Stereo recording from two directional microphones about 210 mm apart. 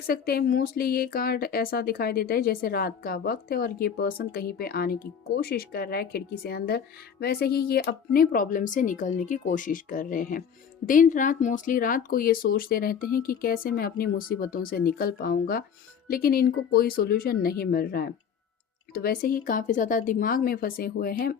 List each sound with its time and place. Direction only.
0.1 s speech: 45° left (ahead or behind)